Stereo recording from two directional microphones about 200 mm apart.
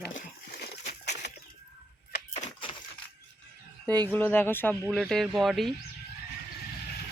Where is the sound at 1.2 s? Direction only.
55° left (ahead or behind).